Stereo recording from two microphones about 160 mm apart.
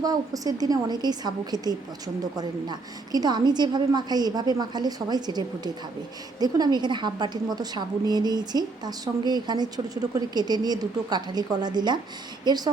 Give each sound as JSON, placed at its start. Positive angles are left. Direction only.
{"t": 0.0, "sound": "a woman's voice", "side_deg": -25}